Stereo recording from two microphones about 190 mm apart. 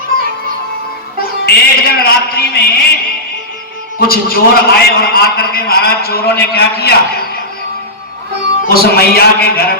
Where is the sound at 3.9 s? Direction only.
50° left (ahead or behind).